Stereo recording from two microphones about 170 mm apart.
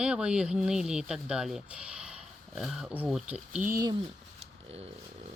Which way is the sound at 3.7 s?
25° right (ahead or behind).